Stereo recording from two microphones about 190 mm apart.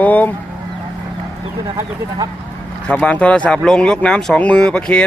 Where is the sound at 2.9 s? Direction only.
5° left (ahead or behind).